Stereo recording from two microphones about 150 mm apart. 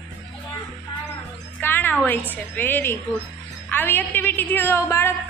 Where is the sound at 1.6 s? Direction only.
15° left (ahead or behind).